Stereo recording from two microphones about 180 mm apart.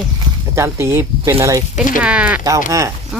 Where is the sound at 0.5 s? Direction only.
15° right (ahead or behind).